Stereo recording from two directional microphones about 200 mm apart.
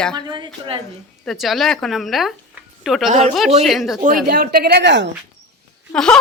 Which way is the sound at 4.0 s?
45° right (ahead or behind).